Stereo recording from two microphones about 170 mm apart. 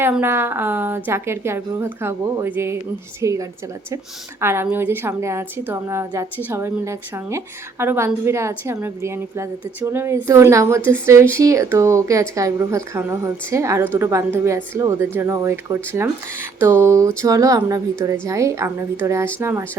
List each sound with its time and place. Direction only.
0.0 s a woman's voice: 15° right (ahead or behind)